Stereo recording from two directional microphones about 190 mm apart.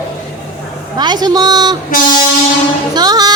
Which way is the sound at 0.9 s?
20° right (ahead or behind).